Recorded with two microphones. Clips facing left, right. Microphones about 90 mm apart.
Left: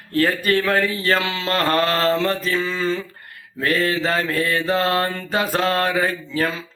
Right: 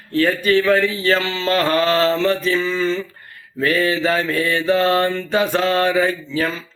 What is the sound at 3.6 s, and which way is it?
Mantra, 45° left (ahead or behind).